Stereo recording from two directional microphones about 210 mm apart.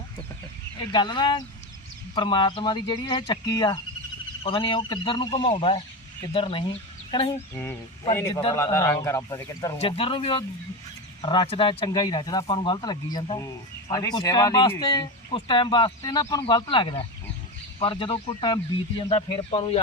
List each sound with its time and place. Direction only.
0.8 s speech: 20° left (ahead or behind)
7.5 s speech: 10° left (ahead or behind)
9.7 s speech: 25° left (ahead or behind)